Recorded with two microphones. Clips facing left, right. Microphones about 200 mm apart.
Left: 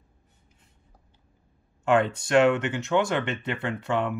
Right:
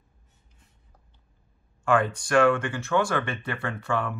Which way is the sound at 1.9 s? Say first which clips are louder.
Left 1 dB; 25° left (ahead or behind).